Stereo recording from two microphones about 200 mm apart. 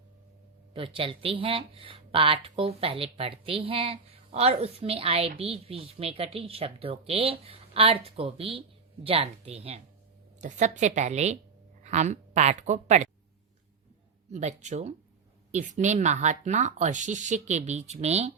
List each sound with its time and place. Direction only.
0.7 s speech: 25° right (ahead or behind)
14.3 s speech: 35° right (ahead or behind)